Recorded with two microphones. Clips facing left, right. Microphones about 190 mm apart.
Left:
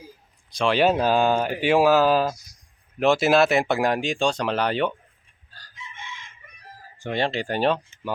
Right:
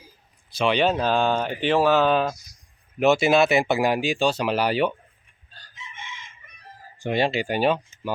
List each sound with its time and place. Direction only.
0.5 s speech: centre (ahead or behind)
5.7 s chicken: 20° right (ahead or behind)
7.0 s speech: 10° right (ahead or behind)